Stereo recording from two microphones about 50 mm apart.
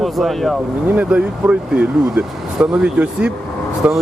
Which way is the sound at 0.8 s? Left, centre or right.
Right.